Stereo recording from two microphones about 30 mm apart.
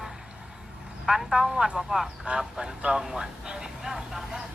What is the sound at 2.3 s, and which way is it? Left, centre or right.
Speech, right.